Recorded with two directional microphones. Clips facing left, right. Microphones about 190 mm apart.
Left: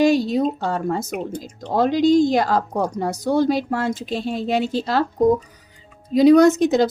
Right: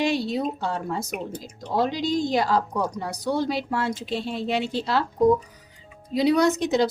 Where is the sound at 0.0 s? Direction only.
45° left (ahead or behind).